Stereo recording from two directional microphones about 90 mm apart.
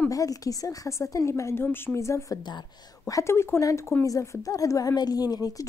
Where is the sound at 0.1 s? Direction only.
40° left (ahead or behind).